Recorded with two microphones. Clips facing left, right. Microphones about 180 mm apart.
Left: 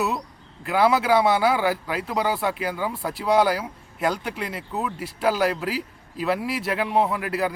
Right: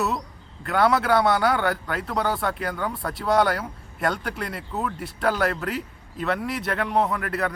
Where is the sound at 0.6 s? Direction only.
5° left (ahead or behind).